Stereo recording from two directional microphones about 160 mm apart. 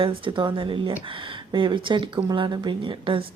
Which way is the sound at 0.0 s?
30° right (ahead or behind).